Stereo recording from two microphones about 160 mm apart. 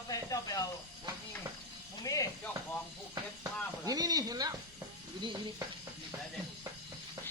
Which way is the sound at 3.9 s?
25° right (ahead or behind).